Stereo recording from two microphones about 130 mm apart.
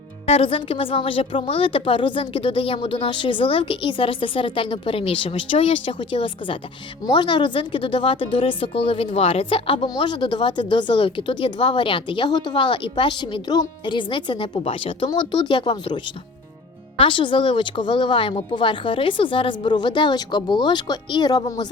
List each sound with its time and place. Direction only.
0.3 s speech: 45° left (ahead or behind)
17.0 s speech: 40° left (ahead or behind)